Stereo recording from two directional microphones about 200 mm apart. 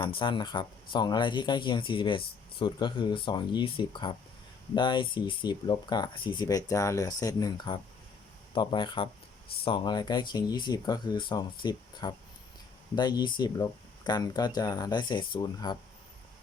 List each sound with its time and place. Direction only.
0.0 s speech: 25° left (ahead or behind)